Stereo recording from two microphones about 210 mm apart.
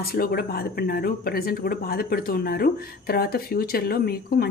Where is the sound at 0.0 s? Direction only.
45° left (ahead or behind).